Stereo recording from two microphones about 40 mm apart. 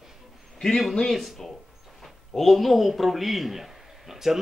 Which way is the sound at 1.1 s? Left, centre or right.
Centre.